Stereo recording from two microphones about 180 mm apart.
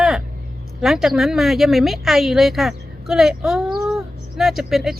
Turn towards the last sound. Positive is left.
turn(degrees=0)  # may be behind; listen again after turning